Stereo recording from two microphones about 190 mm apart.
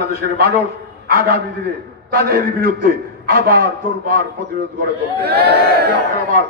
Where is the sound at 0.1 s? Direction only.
50° right (ahead or behind).